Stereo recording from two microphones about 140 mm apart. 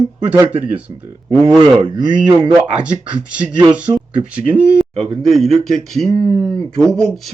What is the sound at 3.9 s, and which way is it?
Speech, 35° right (ahead or behind).